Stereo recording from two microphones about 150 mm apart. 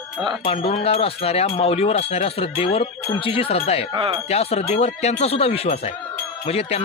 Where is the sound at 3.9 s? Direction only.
30° right (ahead or behind).